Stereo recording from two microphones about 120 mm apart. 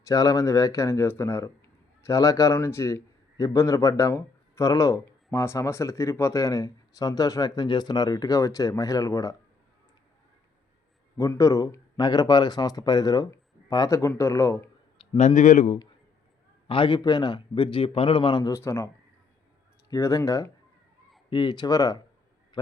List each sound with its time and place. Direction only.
0.0 s speech: 30° left (ahead or behind)
11.2 s speech: 25° left (ahead or behind)
15.0 s a sound: 50° left (ahead or behind)
15.4 s a man's voice: 90° left
16.6 s speech: 45° left (ahead or behind)
18.4 s speech: 25° left (ahead or behind)
19.9 s speech: 25° left (ahead or behind)
21.2 s speech: 40° left (ahead or behind)
22.6 s a man's voice: 40° left (ahead or behind)